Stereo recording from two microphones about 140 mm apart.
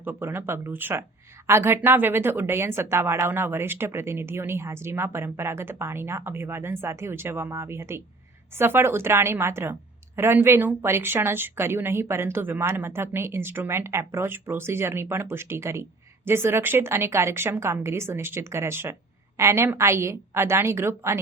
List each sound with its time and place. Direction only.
0.0 s a woman's voice: 15° right (ahead or behind)